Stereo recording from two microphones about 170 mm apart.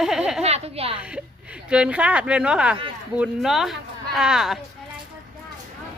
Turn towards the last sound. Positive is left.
turn(degrees=0)  # may be behind; listen again after turning